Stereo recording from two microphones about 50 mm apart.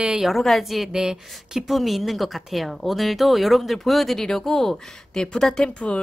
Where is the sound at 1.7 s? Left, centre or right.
Centre.